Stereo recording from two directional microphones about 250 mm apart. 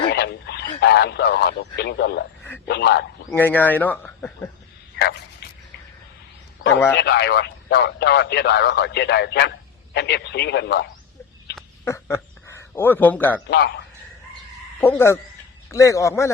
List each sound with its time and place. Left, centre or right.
0.1 s a sound: left
0.8 s a man's voice: left
3.2 s speech: centre
4.9 s bow-wow: left
6.9 s a man's voice: left
11.9 s speech: centre
13.5 s a man's voice: left
14.8 s speech: centre